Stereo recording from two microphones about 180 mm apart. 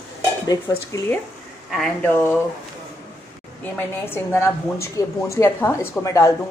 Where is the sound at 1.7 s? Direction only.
Centre (ahead or behind).